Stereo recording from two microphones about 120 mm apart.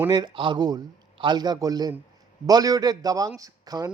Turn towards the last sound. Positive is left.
turn(degrees=-30)  # may be behind; listen again after turning